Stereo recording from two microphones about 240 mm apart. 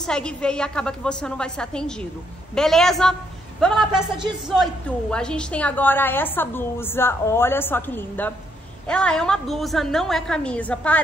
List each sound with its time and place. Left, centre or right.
0.0 s a woman's voice: centre
5.1 s a woman's voice: centre